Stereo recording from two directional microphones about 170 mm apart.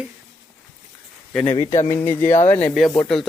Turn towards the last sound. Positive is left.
turn(degrees=0)  # may be behind; listen again after turning